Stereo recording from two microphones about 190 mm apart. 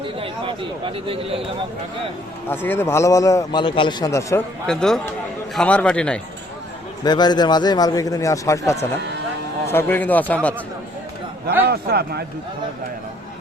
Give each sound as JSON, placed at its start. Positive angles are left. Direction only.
{"t": 0.0, "sound": "speech", "side_deg": -25}
{"t": 2.5, "sound": "a man's voice", "side_deg": 10}
{"t": 4.6, "sound": "a man's voice", "side_deg": 5}
{"t": 7.0, "sound": "a man's voice", "side_deg": 20}
{"t": 11.6, "sound": "a man's voice", "side_deg": -55}